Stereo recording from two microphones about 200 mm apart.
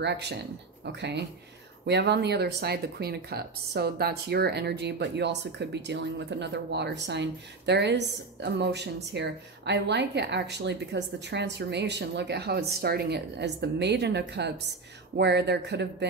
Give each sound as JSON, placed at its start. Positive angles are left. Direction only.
{"t": 0.0, "sound": "speech", "side_deg": -60}